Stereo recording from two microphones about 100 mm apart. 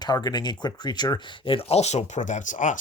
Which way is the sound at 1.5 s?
80° left.